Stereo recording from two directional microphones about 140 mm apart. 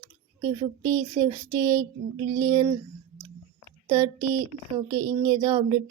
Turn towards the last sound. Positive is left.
turn(degrees=-30)  # may be behind; listen again after turning